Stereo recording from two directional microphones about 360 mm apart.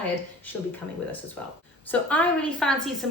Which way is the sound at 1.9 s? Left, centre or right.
Centre.